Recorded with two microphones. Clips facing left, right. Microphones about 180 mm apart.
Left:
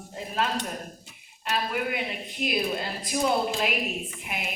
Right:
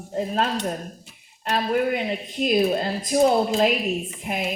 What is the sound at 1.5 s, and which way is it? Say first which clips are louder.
A woman's voice: right 7 dB; 40° right (ahead or behind).